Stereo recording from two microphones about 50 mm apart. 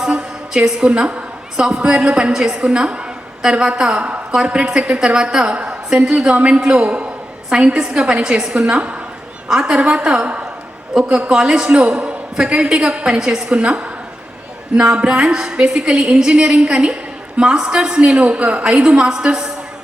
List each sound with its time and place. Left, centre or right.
0.0 s a woman's voice: centre
13.1 s a woman's voice: centre
13.5 s a woman's voice: right